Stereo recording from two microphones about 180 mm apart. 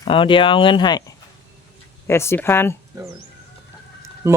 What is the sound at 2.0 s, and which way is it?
Speech, 15° left (ahead or behind).